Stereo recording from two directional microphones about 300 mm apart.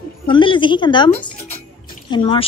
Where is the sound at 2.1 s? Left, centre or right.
Centre.